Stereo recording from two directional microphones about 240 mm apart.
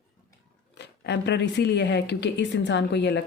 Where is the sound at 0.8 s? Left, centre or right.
Left.